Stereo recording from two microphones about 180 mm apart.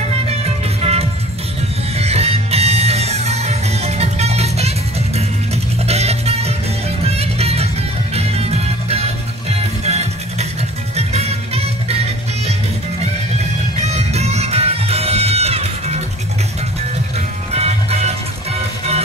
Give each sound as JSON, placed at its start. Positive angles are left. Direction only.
{"t": 0.7, "sound": "music", "side_deg": -35}
{"t": 13.9, "sound": "music", "side_deg": -35}
{"t": 17.6, "sound": "music", "side_deg": -35}